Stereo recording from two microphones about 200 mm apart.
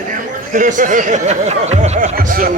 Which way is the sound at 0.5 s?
40° right (ahead or behind).